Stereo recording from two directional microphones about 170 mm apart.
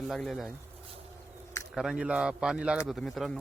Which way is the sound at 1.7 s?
5° right (ahead or behind).